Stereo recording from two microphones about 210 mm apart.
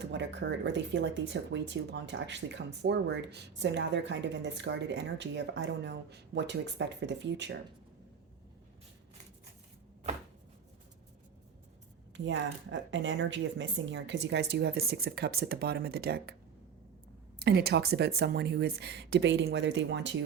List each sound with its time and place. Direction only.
0.0 s speech: 55° right (ahead or behind)
12.1 s a woman's voice: 60° right (ahead or behind)
17.4 s a woman's voice: 50° right (ahead or behind)